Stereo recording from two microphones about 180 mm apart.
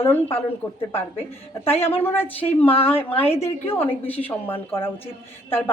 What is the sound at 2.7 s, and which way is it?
Speech, 30° left (ahead or behind).